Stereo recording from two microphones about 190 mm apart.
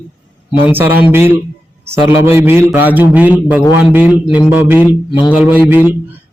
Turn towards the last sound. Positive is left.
turn(degrees=-10)  # may be behind; listen again after turning